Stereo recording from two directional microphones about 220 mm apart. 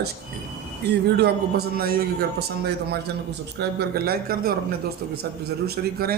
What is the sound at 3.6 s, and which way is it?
Speech, 45° right (ahead or behind).